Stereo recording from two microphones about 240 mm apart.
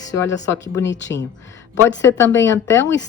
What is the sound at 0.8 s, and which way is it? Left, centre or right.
Speech, left.